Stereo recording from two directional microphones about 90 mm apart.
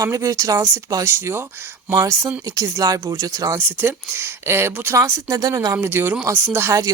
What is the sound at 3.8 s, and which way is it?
Speech, 25° right (ahead or behind).